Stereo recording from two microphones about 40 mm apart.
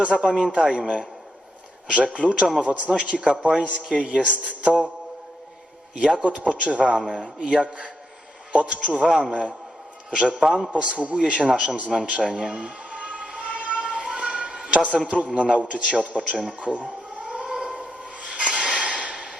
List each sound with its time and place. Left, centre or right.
0.1 s a man's voice: left
0.5 s a man's voice: right
1.9 s a man's voice: right
6.0 s a man's voice: right
6.2 s a man's voice: right
12.5 s a sound: right
14.9 s speech: right
16.6 s a sound: right
18.3 s a sound: right